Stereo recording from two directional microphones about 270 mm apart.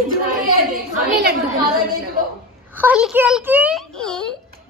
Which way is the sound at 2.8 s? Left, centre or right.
Centre.